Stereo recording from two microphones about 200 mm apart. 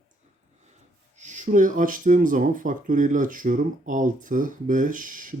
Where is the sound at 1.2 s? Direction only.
40° right (ahead or behind).